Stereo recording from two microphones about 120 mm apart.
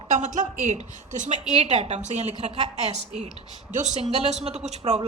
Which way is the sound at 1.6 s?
65° right (ahead or behind).